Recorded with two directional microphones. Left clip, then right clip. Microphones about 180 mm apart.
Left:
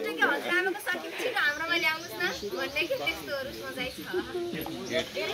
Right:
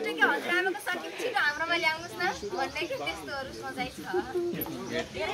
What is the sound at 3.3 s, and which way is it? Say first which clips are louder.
Speech: left 2 dB; 5° right (ahead or behind).